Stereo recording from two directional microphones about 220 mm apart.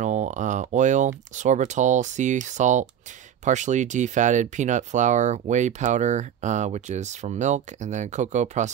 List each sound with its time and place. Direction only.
0.0 s speech: 35° right (ahead or behind)